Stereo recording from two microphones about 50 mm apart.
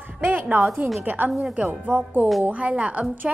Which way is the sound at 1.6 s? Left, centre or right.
Right.